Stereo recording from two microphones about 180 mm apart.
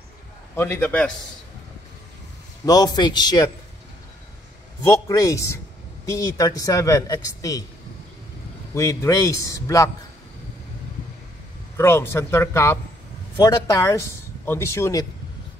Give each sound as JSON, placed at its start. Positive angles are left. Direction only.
{"t": 0.6, "sound": "speech", "side_deg": 10}
{"t": 2.6, "sound": "speech", "side_deg": 20}
{"t": 4.8, "sound": "speech", "side_deg": 20}
{"t": 8.7, "sound": "speech", "side_deg": 15}
{"t": 11.7, "sound": "speech", "side_deg": 15}